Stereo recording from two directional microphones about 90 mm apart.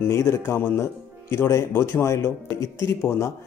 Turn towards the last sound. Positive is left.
turn(degrees=30)  # may be behind; listen again after turning